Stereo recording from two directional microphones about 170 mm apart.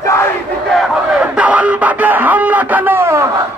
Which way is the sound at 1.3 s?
10° right (ahead or behind).